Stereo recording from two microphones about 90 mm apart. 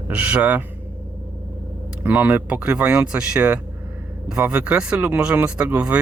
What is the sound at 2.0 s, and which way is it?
Speech, 20° right (ahead or behind).